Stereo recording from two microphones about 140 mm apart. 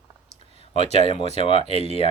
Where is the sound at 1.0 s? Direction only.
45° left (ahead or behind).